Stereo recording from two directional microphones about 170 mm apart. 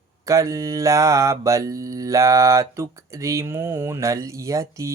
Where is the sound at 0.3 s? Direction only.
20° right (ahead or behind).